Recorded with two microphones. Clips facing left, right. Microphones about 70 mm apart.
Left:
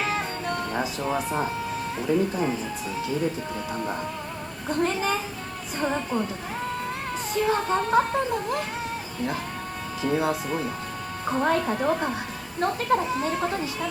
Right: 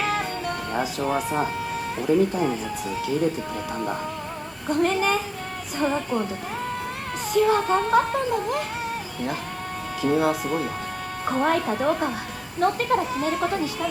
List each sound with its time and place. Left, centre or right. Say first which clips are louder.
0.0 s music: right 2 dB; right
0.7 s speech: right 5 dB; right
4.8 s speech: right 3 dB; right
7.3 s speech: right 4 dB; right
10.0 s speech: right 3 dB; right